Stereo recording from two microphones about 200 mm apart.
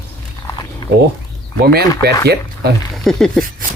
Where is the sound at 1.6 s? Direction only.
50° right (ahead or behind).